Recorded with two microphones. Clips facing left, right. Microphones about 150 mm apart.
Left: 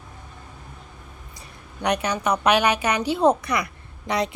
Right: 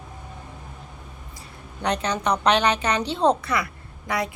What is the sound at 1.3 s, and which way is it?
A woman's voice, 15° left (ahead or behind).